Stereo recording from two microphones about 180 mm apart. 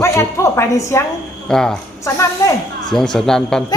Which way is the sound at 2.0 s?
15° left (ahead or behind).